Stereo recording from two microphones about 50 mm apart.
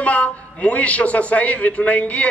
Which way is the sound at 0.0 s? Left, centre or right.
Left.